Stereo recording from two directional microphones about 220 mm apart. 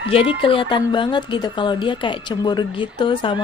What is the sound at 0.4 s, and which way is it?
A woman's voice, 25° left (ahead or behind).